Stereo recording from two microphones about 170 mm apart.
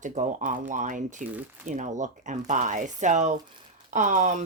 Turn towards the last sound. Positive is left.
turn(degrees=-45)  # may be behind; listen again after turning